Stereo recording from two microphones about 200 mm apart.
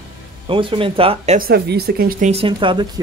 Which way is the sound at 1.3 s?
50° right (ahead or behind).